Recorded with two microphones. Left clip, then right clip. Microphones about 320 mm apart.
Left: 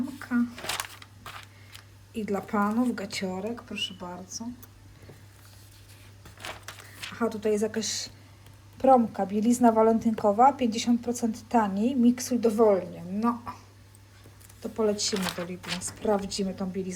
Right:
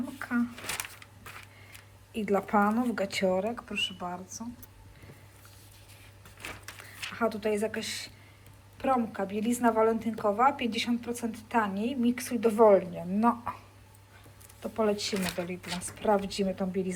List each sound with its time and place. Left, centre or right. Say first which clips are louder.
0.0 s a sound: left 2 dB; centre
2.1 s speech: right 2 dB; centre
6.7 s a woman's voice: right 1 dB; centre
14.6 s speech: left 2 dB; centre